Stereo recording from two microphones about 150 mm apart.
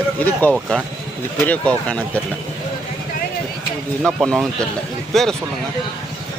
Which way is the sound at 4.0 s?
5° left (ahead or behind).